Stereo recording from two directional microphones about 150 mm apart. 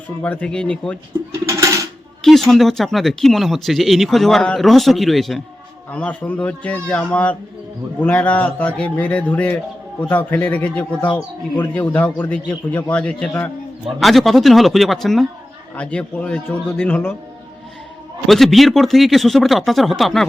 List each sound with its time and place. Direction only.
0.2 s a man's voice: 10° left (ahead or behind)
1.5 s a sound: 20° right (ahead or behind)
2.2 s a man's voice: centre (ahead or behind)
18.3 s speech: centre (ahead or behind)